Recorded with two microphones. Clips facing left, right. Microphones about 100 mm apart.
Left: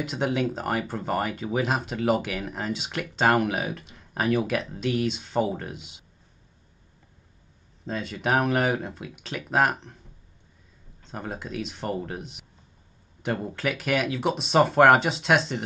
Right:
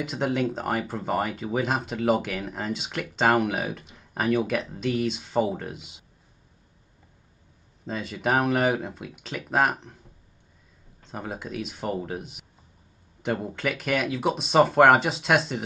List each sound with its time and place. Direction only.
0.0 s speech: centre (ahead or behind)
7.8 s speech: centre (ahead or behind)
11.1 s speech: centre (ahead or behind)